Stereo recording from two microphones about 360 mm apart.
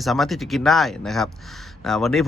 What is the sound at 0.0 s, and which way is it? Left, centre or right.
Speech, centre.